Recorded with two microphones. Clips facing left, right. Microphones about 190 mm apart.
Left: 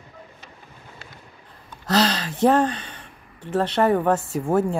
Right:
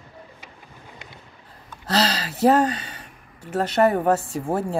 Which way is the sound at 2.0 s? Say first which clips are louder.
Left 2 dB; 35° right (ahead or behind).